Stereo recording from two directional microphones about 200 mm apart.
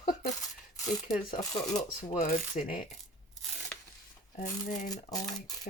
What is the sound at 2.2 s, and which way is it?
Speech, 45° left (ahead or behind).